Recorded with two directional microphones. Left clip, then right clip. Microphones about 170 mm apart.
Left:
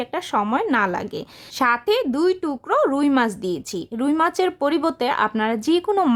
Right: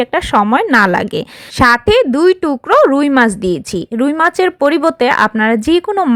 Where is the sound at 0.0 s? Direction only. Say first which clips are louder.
Right 10 dB; 30° right (ahead or behind).